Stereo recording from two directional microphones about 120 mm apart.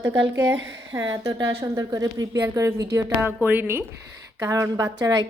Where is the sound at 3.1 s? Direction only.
15° right (ahead or behind).